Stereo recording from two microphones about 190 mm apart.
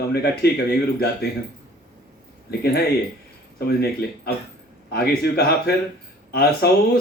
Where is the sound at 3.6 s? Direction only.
55° left (ahead or behind).